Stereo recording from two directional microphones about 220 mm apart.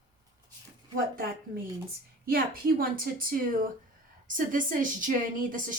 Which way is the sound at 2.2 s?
40° right (ahead or behind).